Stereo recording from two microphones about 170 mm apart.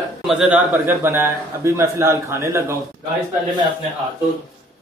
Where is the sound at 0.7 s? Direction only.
15° right (ahead or behind).